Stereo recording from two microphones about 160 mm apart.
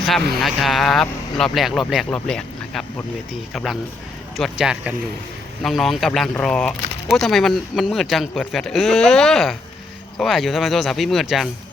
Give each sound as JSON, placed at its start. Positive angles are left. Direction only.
{"t": 0.0, "sound": "speech", "side_deg": 0}